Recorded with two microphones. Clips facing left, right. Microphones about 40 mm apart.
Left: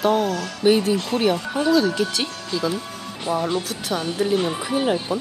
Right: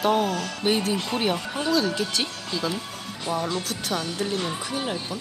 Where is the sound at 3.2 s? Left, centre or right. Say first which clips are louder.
Left 4 dB; centre.